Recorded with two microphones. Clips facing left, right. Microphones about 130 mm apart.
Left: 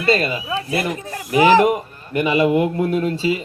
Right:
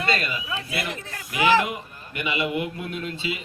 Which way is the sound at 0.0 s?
35° left (ahead or behind).